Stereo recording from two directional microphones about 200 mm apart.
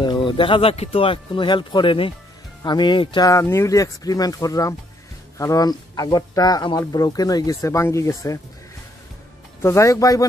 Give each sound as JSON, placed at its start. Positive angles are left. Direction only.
{"t": 0.0, "sound": "speech", "side_deg": 25}
{"t": 9.6, "sound": "speech", "side_deg": 15}